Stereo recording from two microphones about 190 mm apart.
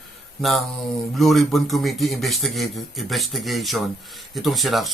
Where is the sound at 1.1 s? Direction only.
Centre (ahead or behind).